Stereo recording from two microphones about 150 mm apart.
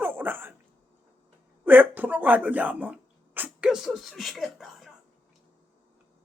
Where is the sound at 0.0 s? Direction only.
15° right (ahead or behind).